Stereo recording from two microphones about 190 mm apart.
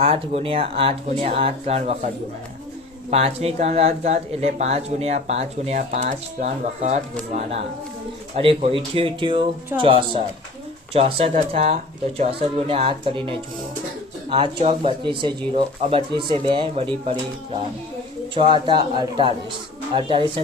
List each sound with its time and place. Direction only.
0.0 s speech: 30° right (ahead or behind)
3.1 s speech: 35° right (ahead or behind)